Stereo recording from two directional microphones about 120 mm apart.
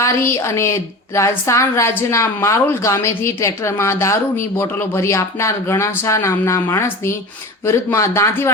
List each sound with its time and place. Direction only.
0.0 s a woman's voice: 25° left (ahead or behind)